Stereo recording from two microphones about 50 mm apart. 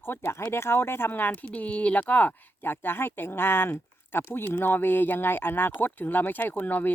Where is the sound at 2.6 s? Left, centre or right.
Left.